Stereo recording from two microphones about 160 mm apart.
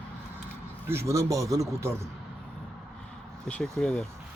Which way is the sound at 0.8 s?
15° right (ahead or behind).